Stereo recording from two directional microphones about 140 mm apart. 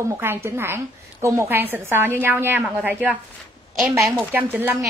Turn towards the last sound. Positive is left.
turn(degrees=-10)  # may be behind; listen again after turning